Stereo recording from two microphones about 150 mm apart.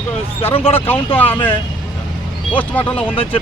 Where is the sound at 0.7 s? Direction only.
15° left (ahead or behind).